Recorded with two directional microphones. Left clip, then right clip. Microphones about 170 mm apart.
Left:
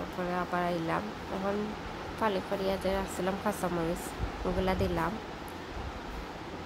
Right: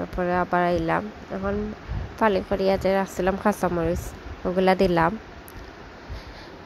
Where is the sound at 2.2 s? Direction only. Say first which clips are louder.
Right 9 dB; 35° right (ahead or behind).